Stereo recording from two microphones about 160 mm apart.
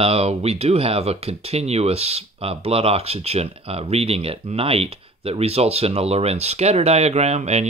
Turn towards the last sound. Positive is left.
turn(degrees=-45)  # may be behind; listen again after turning